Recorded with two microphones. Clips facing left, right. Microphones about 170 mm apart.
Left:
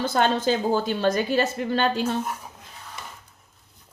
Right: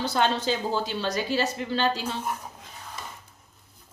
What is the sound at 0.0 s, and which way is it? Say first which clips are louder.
A woman's voice: left 3 dB; 50° left (ahead or behind).